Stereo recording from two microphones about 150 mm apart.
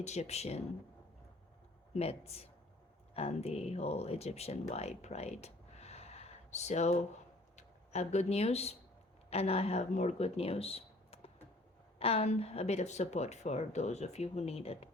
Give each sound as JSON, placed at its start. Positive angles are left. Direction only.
{"t": 0.0, "sound": "speech", "side_deg": 50}
{"t": 1.9, "sound": "speech", "side_deg": 45}
{"t": 4.7, "sound": "a sound", "side_deg": 45}
{"t": 7.5, "sound": "speech", "side_deg": 50}